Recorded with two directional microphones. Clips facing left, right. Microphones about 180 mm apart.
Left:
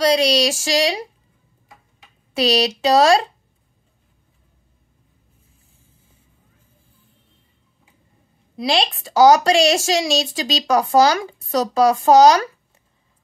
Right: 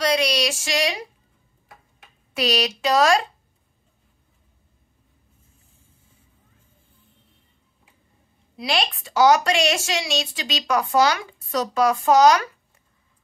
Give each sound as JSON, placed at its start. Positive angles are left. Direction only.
{"t": 0.0, "sound": "speech", "side_deg": 30}
{"t": 2.3, "sound": "speech", "side_deg": 30}
{"t": 8.6, "sound": "speech", "side_deg": 35}